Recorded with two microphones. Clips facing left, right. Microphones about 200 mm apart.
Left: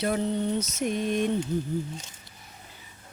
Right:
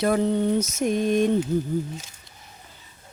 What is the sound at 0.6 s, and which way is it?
Mantra, 45° right (ahead or behind).